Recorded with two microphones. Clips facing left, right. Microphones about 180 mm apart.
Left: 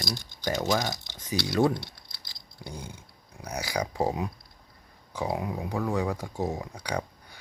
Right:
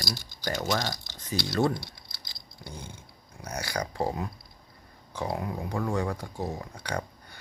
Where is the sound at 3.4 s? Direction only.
10° left (ahead or behind).